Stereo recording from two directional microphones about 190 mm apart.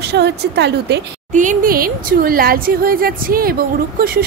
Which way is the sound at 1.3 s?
45° right (ahead or behind).